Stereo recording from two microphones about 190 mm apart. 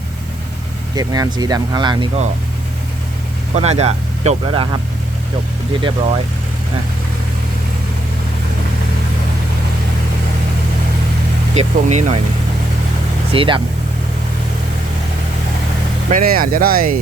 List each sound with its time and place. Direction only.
0.9 s speech: 20° right (ahead or behind)
3.5 s speech: 35° right (ahead or behind)
5.8 s speech: 30° right (ahead or behind)
11.5 s speech: 35° right (ahead or behind)
13.3 s speech: 30° right (ahead or behind)
16.0 s speech: 45° right (ahead or behind)